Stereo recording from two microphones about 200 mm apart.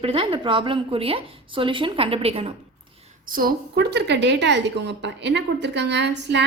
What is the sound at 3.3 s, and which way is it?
A woman's voice, 45° right (ahead or behind).